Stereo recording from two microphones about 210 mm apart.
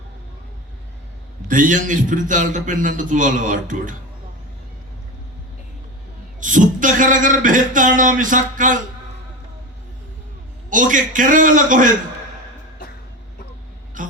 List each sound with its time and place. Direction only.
1.5 s a man's voice: 40° right (ahead or behind)
6.4 s a man's voice: 40° right (ahead or behind)
10.7 s a man's voice: 40° right (ahead or behind)
14.0 s a sound: 40° right (ahead or behind)